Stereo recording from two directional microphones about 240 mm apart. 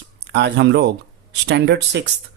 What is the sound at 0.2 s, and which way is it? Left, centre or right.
Speech, right.